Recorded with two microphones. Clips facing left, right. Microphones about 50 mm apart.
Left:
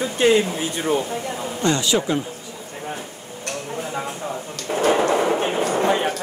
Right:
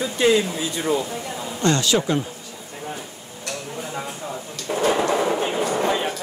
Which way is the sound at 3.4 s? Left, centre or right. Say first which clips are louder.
Left 2 dB; left.